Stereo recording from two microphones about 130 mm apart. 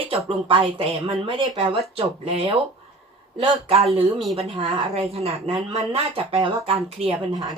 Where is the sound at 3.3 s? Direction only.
50° right (ahead or behind).